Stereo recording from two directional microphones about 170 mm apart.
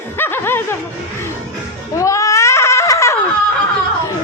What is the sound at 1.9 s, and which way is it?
Baby cry, 20° left (ahead or behind).